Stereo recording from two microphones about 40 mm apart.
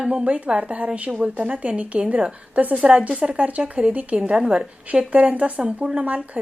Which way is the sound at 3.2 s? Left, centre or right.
Right.